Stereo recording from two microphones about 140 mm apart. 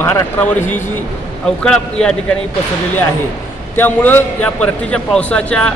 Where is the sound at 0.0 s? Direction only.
15° left (ahead or behind).